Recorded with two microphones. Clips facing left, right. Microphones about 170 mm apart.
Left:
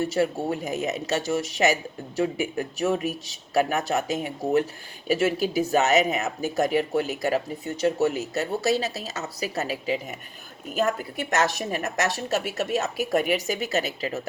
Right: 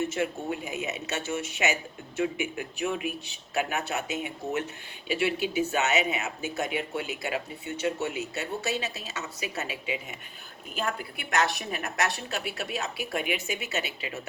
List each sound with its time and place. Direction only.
0.0 s a woman's voice: 35° left (ahead or behind)